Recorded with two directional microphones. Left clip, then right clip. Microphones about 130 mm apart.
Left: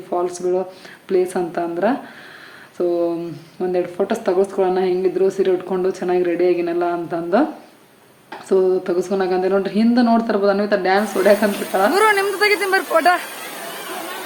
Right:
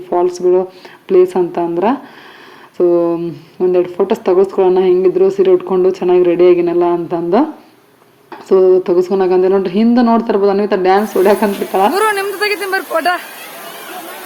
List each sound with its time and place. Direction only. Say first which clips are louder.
0.1 s speech: right 8 dB; 20° right (ahead or behind)
8.4 s speech: right 7 dB; 20° right (ahead or behind)